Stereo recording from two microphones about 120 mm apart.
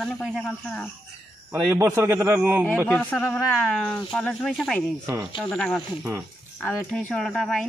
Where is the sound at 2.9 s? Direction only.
15° left (ahead or behind).